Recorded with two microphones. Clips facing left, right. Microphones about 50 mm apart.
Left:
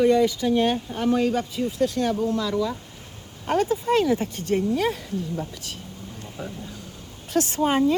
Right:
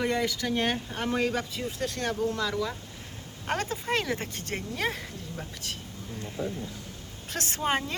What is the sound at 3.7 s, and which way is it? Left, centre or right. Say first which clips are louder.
Speech: left 8 dB; right.